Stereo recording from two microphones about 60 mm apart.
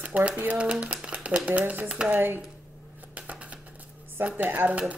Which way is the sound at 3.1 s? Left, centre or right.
Right.